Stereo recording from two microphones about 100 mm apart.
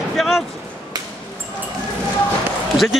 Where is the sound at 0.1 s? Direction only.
Centre (ahead or behind).